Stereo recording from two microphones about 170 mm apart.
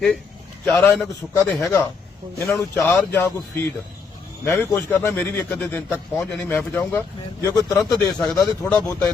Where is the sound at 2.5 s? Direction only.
15° left (ahead or behind).